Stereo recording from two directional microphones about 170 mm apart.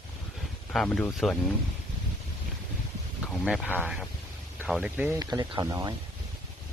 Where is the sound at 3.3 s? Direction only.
Centre (ahead or behind).